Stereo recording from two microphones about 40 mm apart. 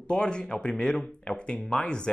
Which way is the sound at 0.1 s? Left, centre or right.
Left.